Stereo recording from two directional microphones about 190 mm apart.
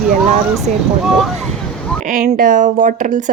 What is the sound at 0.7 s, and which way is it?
Speech, 45° right (ahead or behind).